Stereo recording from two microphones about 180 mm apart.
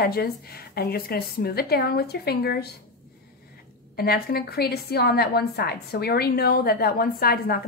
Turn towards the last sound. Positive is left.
turn(degrees=55)  # may be behind; listen again after turning